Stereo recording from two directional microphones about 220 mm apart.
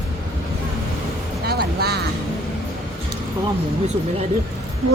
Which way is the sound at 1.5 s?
45° right (ahead or behind).